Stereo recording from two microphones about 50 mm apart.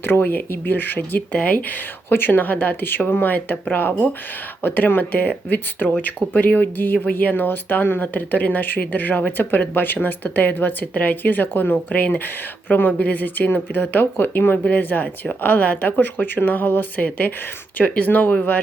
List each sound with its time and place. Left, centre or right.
0.0 s speech: left
6.3 s speech: left
15.9 s speech: left